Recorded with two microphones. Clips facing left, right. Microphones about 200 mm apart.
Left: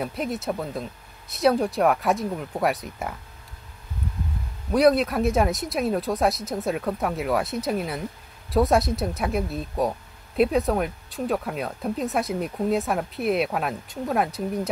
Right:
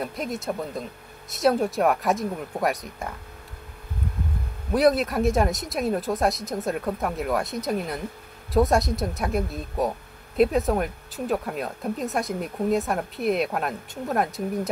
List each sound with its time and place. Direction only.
0.0 s speech: centre (ahead or behind)
4.7 s speech: centre (ahead or behind)